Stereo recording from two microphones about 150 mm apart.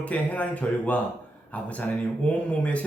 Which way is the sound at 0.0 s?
10° left (ahead or behind).